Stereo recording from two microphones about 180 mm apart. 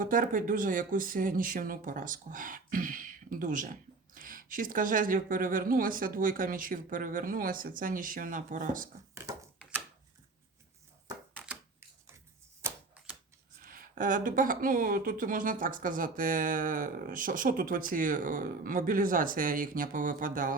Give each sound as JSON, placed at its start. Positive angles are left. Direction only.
{"t": 0.0, "sound": "speech", "side_deg": -50}
{"t": 13.6, "sound": "speech", "side_deg": -50}